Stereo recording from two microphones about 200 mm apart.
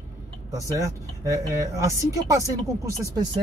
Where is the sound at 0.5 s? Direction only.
15° right (ahead or behind).